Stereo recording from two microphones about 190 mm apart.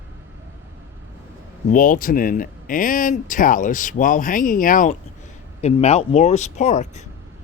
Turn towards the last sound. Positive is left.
turn(degrees=35)  # may be behind; listen again after turning